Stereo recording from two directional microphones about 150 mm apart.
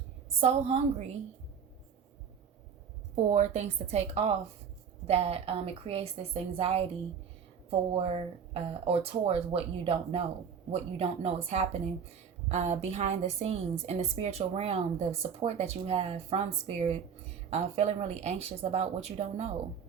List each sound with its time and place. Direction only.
0.3 s a woman's voice: 45° right (ahead or behind)
3.2 s a woman's voice: 45° right (ahead or behind)
7.9 s a woman's voice: 40° right (ahead or behind)